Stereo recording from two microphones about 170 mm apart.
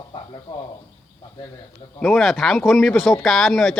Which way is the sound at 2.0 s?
Centre (ahead or behind).